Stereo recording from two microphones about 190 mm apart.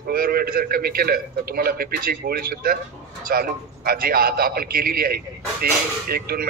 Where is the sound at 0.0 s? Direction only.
50° right (ahead or behind).